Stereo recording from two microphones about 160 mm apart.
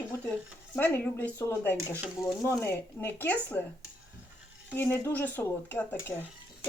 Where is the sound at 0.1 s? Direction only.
10° left (ahead or behind).